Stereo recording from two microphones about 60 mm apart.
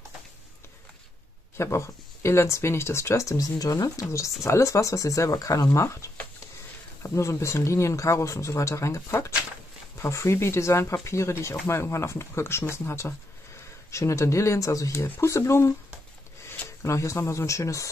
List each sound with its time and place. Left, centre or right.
1.6 s speech: left
4.0 s speech: left
16.8 s speech: left